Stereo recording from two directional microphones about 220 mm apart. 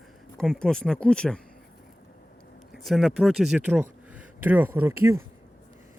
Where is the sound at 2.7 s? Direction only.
Centre (ahead or behind).